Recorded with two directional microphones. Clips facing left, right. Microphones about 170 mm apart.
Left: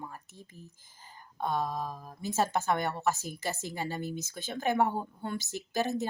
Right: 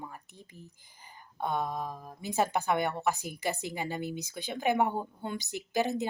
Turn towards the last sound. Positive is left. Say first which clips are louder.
# right 1 dB
turn(degrees=-15)  # may be behind; listen again after turning